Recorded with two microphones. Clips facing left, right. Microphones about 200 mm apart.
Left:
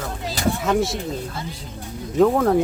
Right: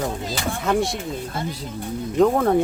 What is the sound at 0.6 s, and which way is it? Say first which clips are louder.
Speech: right 1 dB; centre (ahead or behind).